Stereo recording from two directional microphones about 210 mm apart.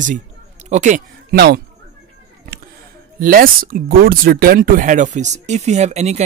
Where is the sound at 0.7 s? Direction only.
35° right (ahead or behind).